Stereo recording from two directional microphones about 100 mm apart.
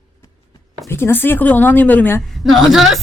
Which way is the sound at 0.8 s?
25° left (ahead or behind).